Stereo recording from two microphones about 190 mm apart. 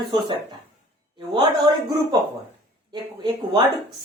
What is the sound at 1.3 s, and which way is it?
Speech, 20° right (ahead or behind).